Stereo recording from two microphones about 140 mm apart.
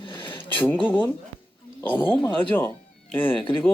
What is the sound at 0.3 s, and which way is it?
Speech, 15° left (ahead or behind).